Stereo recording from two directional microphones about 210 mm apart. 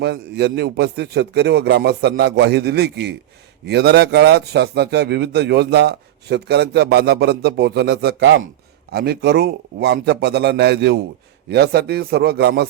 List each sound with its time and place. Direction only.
0.0 s a man's voice: 50° right (ahead or behind)